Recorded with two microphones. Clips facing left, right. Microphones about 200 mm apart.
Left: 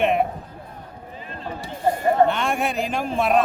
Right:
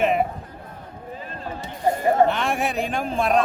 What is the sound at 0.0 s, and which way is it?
Music, centre (ahead or behind).